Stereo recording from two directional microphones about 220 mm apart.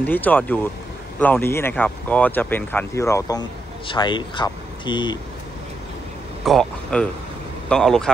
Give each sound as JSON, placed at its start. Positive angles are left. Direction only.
{"t": 0.0, "sound": "speech", "side_deg": 5}
{"t": 6.4, "sound": "speech", "side_deg": 0}